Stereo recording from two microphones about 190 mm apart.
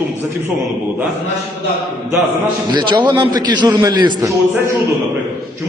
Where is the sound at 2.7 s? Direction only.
25° right (ahead or behind).